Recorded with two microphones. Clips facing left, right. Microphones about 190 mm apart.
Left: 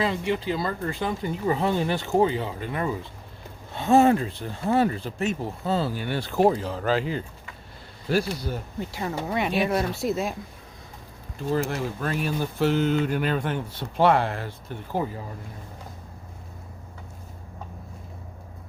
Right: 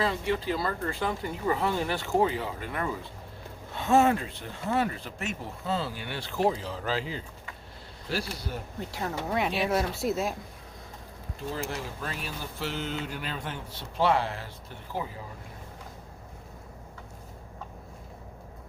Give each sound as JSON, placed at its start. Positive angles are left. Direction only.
{"t": 0.0, "sound": "speech", "side_deg": 15}
{"t": 8.8, "sound": "speech", "side_deg": 0}
{"t": 11.5, "sound": "speech", "side_deg": 60}